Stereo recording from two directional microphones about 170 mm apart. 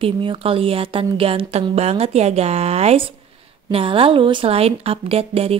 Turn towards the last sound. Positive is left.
turn(degrees=-35)  # may be behind; listen again after turning